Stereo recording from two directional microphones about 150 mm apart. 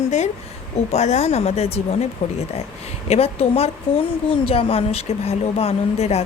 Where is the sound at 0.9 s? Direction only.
50° left (ahead or behind).